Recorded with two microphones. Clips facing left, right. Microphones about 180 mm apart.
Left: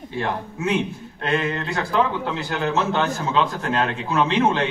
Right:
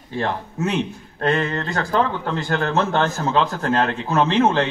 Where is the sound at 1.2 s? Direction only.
45° right (ahead or behind).